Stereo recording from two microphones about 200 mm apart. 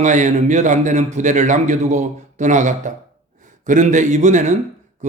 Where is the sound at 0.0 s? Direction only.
40° right (ahead or behind).